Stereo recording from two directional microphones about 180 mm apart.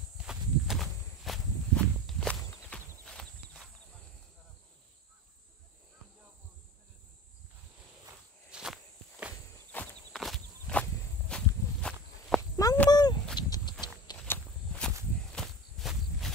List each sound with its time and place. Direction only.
0.2 s walk: centre (ahead or behind)
2.4 s horse: 10° left (ahead or behind)
8.5 s walk: 5° right (ahead or behind)
12.4 s a sound: 15° left (ahead or behind)
14.2 s walk: 10° left (ahead or behind)